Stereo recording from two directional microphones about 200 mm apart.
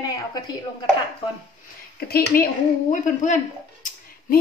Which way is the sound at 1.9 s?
50° left (ahead or behind).